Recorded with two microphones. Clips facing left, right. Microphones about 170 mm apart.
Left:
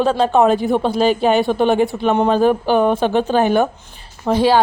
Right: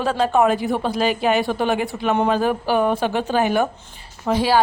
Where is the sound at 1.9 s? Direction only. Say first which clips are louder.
Left 4 dB; 5° right (ahead or behind).